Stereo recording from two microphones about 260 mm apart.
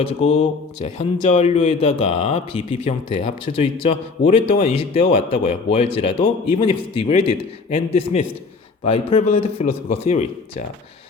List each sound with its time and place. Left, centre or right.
0.0 s speech: left